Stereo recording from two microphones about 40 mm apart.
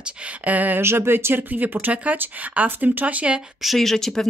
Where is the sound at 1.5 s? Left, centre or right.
Right.